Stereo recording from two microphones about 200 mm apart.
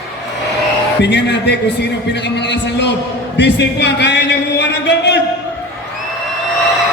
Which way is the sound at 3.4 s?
60° left (ahead or behind).